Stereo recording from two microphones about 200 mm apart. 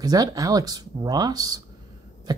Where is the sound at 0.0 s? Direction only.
15° right (ahead or behind).